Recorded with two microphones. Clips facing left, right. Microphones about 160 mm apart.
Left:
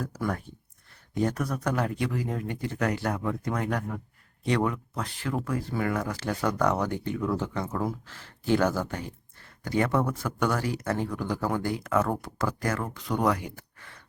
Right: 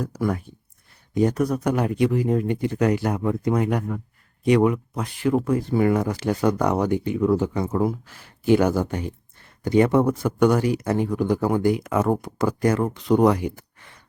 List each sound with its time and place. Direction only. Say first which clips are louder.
0.0 s speech: right 6 dB; 15° right (ahead or behind)